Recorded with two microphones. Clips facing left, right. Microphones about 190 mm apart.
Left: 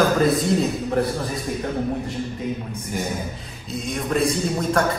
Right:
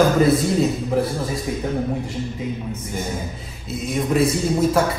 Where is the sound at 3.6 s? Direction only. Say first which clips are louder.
Right 3 dB; 5° right (ahead or behind).